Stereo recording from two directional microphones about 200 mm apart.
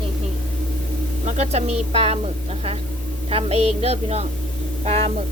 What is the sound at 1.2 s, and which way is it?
Speech, 35° right (ahead or behind).